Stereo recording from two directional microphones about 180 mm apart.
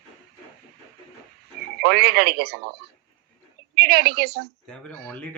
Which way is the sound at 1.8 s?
60° right (ahead or behind).